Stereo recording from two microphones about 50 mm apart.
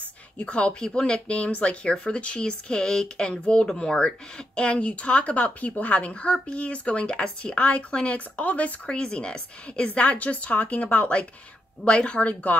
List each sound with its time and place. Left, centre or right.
0.5 s a woman's voice: left